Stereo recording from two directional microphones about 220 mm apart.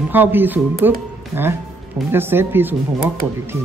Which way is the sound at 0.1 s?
10° right (ahead or behind).